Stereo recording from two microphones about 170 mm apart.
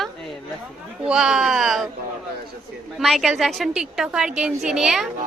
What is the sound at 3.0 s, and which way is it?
A woman's voice, centre (ahead or behind).